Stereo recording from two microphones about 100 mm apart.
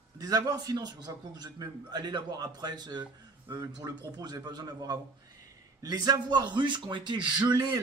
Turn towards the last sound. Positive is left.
turn(degrees=-45)  # may be behind; listen again after turning